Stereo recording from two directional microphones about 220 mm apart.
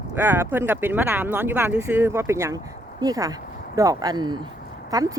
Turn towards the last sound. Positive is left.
turn(degrees=-15)  # may be behind; listen again after turning